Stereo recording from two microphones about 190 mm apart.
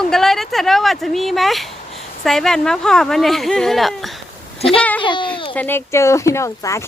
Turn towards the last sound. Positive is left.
turn(degrees=15)  # may be behind; listen again after turning